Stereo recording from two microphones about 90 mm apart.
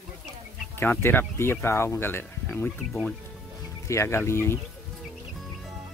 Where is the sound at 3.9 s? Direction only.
30° left (ahead or behind).